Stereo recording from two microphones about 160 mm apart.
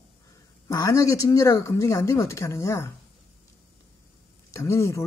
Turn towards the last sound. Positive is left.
turn(degrees=20)  # may be behind; listen again after turning